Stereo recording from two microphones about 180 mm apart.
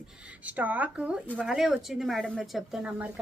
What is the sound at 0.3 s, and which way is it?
Speech, 10° right (ahead or behind).